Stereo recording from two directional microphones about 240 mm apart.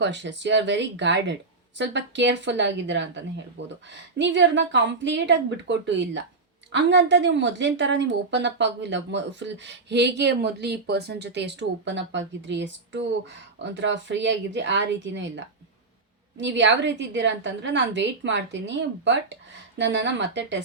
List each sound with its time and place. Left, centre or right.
0.0 s a woman's voice: right